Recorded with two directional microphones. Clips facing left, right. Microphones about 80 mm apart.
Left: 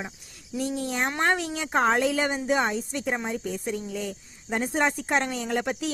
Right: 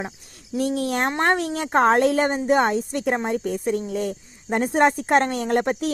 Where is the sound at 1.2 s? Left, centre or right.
Right.